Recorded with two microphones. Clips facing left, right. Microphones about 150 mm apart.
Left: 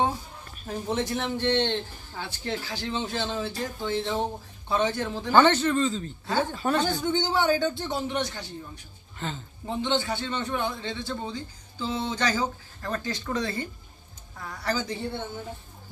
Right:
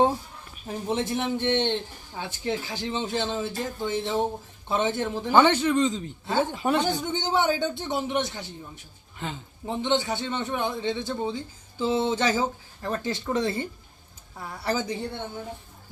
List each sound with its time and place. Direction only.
0.5 s a sound: 10° right (ahead or behind)
0.9 s a man's voice: 20° right (ahead or behind)
9.1 s a man's voice: 10° right (ahead or behind)